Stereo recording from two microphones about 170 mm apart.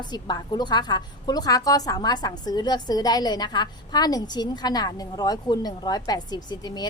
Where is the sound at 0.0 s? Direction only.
25° left (ahead or behind).